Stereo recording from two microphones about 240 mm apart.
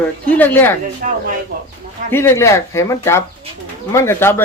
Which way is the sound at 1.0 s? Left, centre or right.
Right.